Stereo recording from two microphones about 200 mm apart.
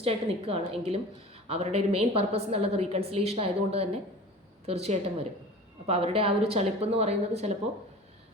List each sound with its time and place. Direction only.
0.0 s a woman's voice: 30° right (ahead or behind)